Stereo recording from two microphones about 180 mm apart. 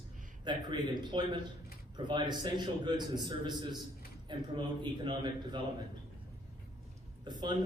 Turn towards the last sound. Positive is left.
turn(degrees=-25)  # may be behind; listen again after turning